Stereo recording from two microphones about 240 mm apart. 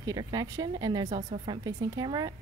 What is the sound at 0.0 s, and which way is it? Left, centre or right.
Speech, centre.